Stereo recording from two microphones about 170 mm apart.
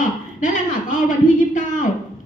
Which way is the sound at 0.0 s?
50° left (ahead or behind).